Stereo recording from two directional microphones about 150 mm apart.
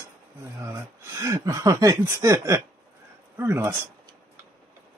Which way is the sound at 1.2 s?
20° right (ahead or behind).